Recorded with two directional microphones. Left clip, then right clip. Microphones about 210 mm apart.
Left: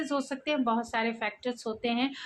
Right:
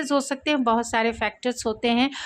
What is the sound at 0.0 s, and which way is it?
A woman's voice, 50° right (ahead or behind).